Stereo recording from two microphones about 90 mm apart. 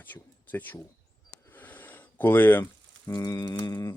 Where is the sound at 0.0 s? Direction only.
20° left (ahead or behind).